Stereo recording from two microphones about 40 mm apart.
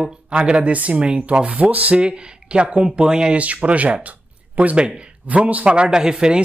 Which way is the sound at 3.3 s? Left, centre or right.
Right.